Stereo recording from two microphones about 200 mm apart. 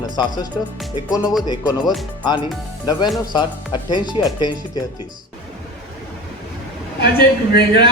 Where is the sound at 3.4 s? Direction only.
20° left (ahead or behind).